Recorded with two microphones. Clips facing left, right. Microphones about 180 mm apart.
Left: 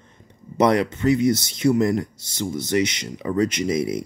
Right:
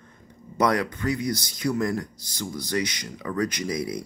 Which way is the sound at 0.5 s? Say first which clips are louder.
Left 5 dB; 25° left (ahead or behind).